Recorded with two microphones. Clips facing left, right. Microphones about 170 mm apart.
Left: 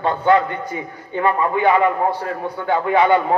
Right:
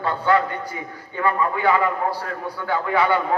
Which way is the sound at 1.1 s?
25° left (ahead or behind).